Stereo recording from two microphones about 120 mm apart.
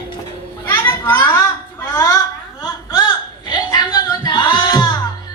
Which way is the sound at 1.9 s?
30° left (ahead or behind).